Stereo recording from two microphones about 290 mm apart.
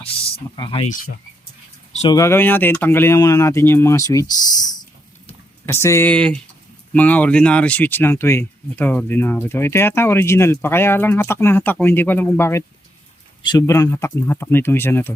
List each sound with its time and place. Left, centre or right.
0.5 s speech: centre